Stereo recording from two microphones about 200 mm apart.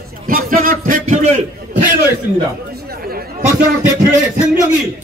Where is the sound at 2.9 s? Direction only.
50° right (ahead or behind).